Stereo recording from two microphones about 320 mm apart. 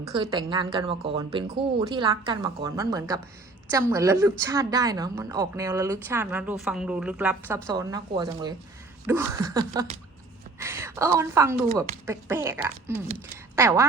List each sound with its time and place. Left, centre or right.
0.2 s a woman's voice: centre
11.7 s speech: centre
12.0 s speech: centre